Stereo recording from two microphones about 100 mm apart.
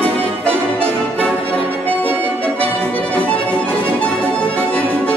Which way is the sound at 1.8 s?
15° left (ahead or behind).